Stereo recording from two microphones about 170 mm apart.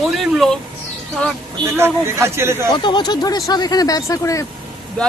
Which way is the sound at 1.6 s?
15° right (ahead or behind).